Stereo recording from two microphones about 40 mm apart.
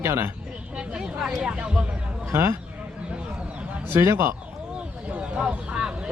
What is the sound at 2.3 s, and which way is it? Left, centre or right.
Speech, right.